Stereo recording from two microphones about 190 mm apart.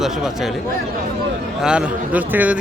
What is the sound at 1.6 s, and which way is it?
A man's voice, 5° right (ahead or behind).